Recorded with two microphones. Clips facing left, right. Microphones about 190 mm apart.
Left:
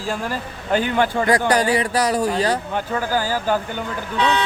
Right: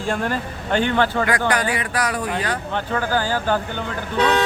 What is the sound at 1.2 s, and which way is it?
Speech, 35° left (ahead or behind).